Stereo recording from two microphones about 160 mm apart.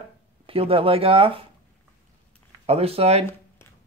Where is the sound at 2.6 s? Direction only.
40° right (ahead or behind).